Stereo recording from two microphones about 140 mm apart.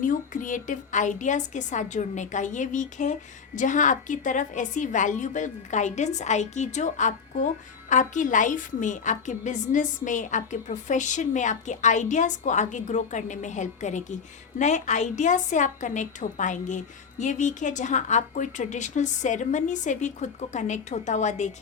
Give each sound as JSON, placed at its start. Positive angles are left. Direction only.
{"t": 0.0, "sound": "a woman's voice", "side_deg": 70}